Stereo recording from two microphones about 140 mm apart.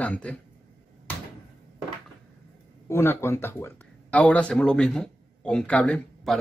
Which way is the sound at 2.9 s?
20° left (ahead or behind).